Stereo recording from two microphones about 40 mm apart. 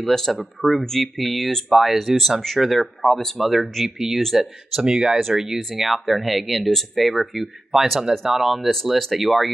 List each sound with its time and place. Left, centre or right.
0.0 s speech: centre
4.8 s speech: centre
5.6 s speech: centre
8.6 s speech: centre